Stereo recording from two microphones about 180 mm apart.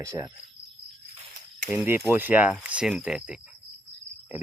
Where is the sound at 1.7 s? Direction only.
5° right (ahead or behind).